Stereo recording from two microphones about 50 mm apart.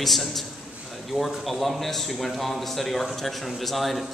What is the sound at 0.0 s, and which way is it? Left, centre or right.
A man's voice, centre.